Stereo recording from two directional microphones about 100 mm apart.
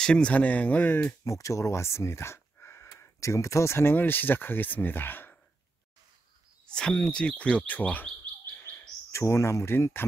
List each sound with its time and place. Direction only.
0.0 s speech: 10° left (ahead or behind)
1.2 s speech: 30° left (ahead or behind)
6.7 s speech: 10° left (ahead or behind)
8.5 s bird: 20° left (ahead or behind)